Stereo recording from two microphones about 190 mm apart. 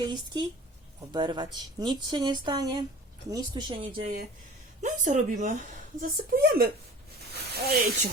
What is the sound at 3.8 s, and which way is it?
Speech, 45° right (ahead or behind).